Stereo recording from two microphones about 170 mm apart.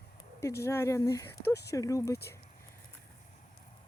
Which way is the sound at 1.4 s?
75° left (ahead or behind).